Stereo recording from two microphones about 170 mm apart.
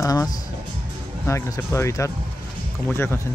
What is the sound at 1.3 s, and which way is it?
Speech, 15° left (ahead or behind).